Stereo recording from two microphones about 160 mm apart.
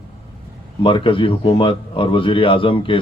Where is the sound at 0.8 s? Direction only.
30° left (ahead or behind).